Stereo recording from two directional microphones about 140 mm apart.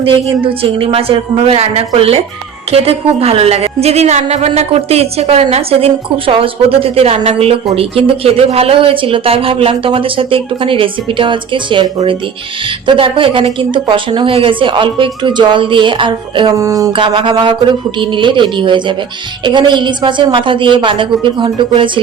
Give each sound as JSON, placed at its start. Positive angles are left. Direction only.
{"t": 0.4, "sound": "a woman's voice", "side_deg": -40}
{"t": 16.6, "sound": "speech", "side_deg": -25}
{"t": 16.9, "sound": "speech", "side_deg": -35}